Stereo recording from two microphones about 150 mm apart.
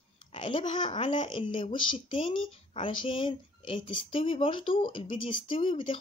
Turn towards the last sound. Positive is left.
turn(degrees=35)  # may be behind; listen again after turning